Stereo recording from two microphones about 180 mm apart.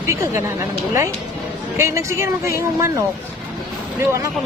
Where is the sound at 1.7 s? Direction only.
15° right (ahead or behind).